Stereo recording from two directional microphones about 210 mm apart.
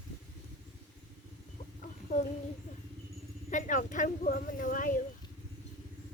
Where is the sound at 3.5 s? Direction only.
35° left (ahead or behind).